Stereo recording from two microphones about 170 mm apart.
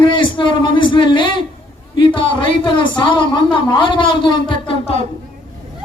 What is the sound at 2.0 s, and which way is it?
A woman's voice, 30° left (ahead or behind).